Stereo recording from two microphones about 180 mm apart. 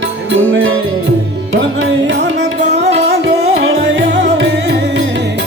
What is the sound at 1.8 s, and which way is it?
Music, 90° right.